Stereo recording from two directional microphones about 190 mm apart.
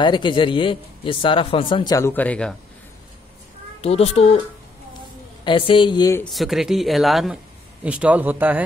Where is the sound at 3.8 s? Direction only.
30° left (ahead or behind).